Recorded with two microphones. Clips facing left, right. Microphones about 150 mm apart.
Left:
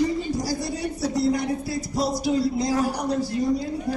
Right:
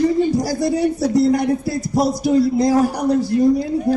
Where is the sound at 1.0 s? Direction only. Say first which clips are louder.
Right 5 dB; 50° right (ahead or behind).